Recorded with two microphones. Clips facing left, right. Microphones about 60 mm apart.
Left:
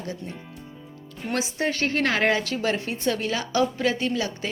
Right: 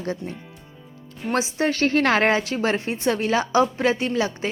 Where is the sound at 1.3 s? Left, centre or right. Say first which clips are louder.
Right 4 dB; right.